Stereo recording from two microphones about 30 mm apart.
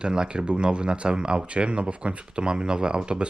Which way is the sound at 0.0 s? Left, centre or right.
Right.